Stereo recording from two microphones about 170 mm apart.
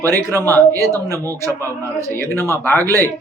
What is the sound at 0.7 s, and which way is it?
Speech, 20° right (ahead or behind).